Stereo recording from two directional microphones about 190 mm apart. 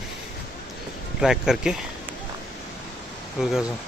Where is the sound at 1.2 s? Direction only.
5° right (ahead or behind).